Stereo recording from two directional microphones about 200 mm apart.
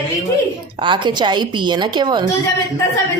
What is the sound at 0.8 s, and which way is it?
A woman's voice, 25° right (ahead or behind).